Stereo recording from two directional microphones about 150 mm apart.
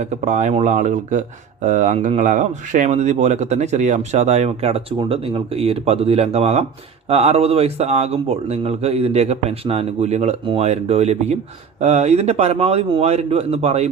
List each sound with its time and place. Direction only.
0.0 s speech: 55° right (ahead or behind)